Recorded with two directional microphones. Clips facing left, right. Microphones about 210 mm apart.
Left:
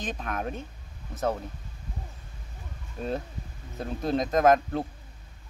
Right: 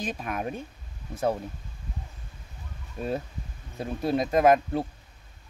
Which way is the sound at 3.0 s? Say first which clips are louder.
Right 1 dB; 10° right (ahead or behind).